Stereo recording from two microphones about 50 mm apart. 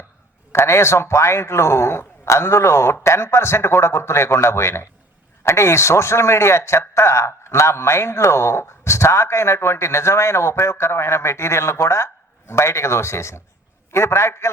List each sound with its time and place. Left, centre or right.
0.5 s a man's voice: left